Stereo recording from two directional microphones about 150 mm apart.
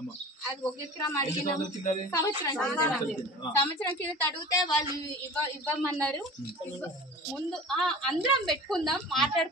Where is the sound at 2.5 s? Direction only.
10° left (ahead or behind).